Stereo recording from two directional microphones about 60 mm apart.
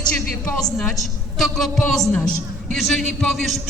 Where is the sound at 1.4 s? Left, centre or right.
Centre.